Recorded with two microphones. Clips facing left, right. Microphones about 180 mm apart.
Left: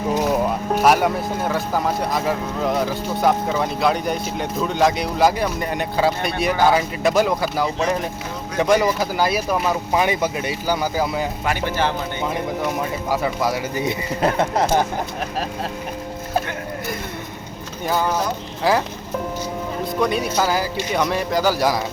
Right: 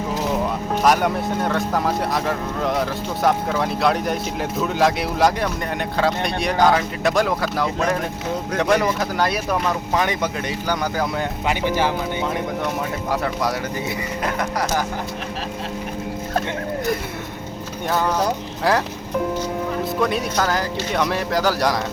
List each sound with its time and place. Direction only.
0.8 s speech: 5° left (ahead or behind)
11.4 s speech: 15° right (ahead or behind)
12.2 s speech: centre (ahead or behind)
13.8 s speech: 30° left (ahead or behind)
17.8 s speech: centre (ahead or behind)